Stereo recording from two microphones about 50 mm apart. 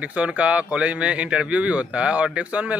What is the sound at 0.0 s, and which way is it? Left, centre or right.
Speech, right.